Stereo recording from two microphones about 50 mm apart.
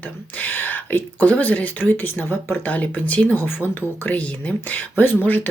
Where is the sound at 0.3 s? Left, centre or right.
Left.